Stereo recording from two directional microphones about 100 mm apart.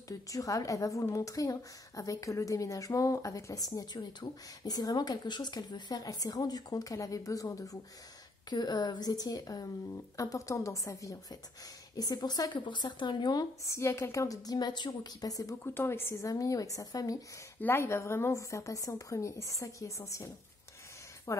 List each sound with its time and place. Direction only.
0.3 s a woman's voice: 35° left (ahead or behind)
13.7 s a woman's voice: 25° left (ahead or behind)
15.7 s a woman's voice: 20° left (ahead or behind); by 17.2 s 35° left (ahead or behind)
17.6 s a woman's voice: 25° left (ahead or behind)
21.3 s speech: 30° left (ahead or behind)